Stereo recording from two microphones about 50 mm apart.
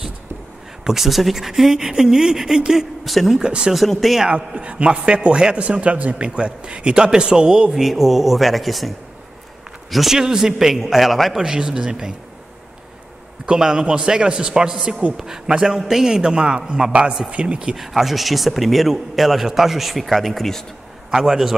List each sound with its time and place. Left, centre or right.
0.8 s speech: centre
3.1 s a man's voice: centre
3.3 s speech: centre
3.7 s a man's voice: centre
4.3 s a man's voice: right
7.8 s a man's voice: centre
10.1 s a man's voice: centre
11.4 s speech: centre
13.5 s a man's voice: centre
17.7 s a man's voice: centre
21.2 s a man's voice: centre